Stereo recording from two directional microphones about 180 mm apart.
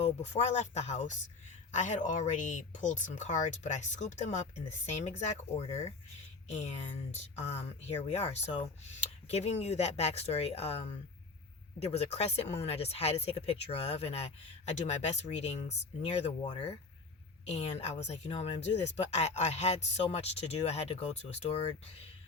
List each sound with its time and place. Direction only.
0.0 s speech: 40° left (ahead or behind)
7.2 s speech: 35° left (ahead or behind)